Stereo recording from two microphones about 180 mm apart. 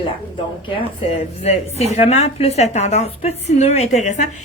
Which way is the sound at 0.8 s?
35° left (ahead or behind).